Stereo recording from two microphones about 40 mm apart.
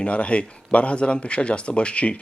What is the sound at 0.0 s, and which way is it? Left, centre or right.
Speech, left.